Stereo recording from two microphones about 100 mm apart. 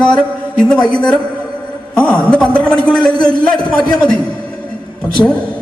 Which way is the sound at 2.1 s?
10° left (ahead or behind).